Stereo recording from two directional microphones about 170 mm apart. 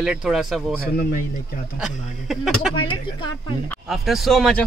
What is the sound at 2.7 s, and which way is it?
Speech, 30° left (ahead or behind).